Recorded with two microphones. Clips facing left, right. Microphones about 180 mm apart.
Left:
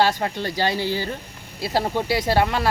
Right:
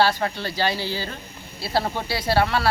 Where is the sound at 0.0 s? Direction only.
15° left (ahead or behind).